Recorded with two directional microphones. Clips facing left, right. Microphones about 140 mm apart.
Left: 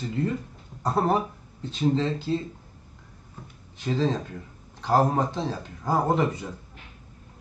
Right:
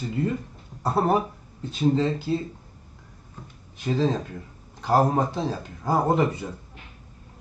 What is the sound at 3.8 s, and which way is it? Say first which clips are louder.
Speech: right 2 dB; 10° right (ahead or behind).